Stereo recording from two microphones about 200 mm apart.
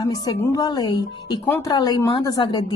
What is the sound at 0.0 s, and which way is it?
A woman's voice, 20° left (ahead or behind).